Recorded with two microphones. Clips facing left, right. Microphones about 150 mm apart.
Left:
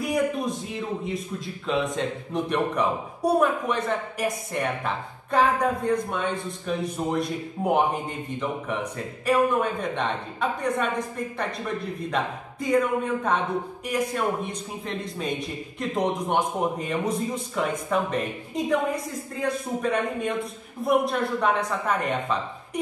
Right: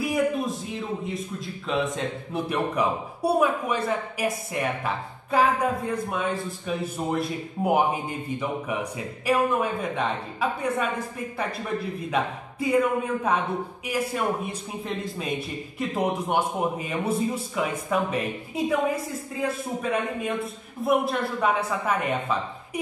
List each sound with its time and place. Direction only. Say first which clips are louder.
0.0 s a man's voice: even; centre (ahead or behind)